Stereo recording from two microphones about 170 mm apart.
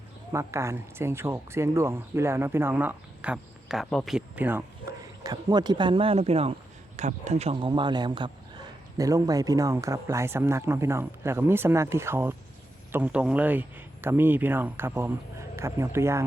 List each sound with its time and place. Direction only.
0.3 s speech: 15° right (ahead or behind); by 4.2 s centre (ahead or behind)
4.4 s speech: 10° right (ahead or behind)